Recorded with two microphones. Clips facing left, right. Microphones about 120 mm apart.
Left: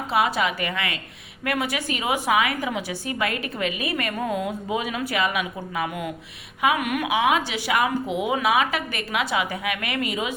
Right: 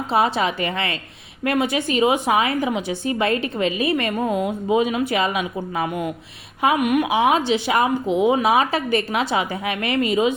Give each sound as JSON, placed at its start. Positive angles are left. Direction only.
{"t": 0.1, "sound": "a woman's voice", "side_deg": -30}
{"t": 6.7, "sound": "a woman's voice", "side_deg": -20}
{"t": 7.1, "sound": "a woman's voice", "side_deg": -30}